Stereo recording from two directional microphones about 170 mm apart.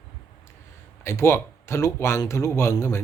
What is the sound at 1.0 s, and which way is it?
Speech, 15° left (ahead or behind).